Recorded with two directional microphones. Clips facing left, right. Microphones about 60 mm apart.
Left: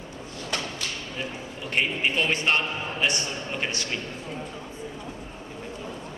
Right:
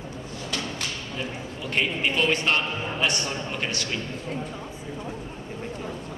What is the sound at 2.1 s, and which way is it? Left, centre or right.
A man's voice, left.